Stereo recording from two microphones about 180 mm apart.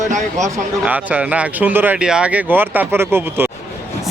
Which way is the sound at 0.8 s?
10° right (ahead or behind).